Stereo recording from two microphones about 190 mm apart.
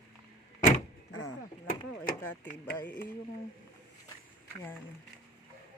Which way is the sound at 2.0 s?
45° left (ahead or behind).